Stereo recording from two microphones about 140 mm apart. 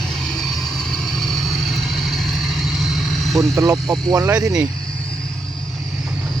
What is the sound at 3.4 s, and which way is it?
Speech, 25° right (ahead or behind).